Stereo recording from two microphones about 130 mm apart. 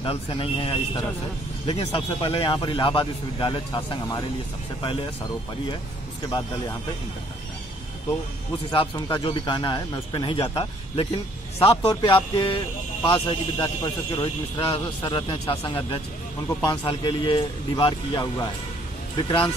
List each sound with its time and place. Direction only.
0.0 s speech: 45° left (ahead or behind)
8.6 s speech: 35° left (ahead or behind)